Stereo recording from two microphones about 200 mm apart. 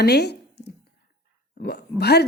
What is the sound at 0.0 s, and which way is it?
Speech, 55° left (ahead or behind).